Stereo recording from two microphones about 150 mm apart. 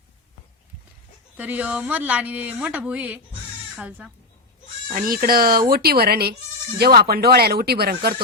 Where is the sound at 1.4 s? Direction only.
10° right (ahead or behind).